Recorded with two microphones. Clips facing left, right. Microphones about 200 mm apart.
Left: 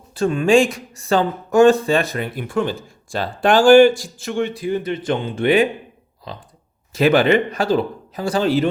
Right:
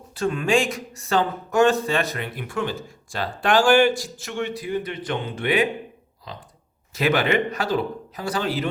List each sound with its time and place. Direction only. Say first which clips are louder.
0.1 s speech: left 6 dB; 30° left (ahead or behind)
6.9 s speech: left 6 dB; 30° left (ahead or behind)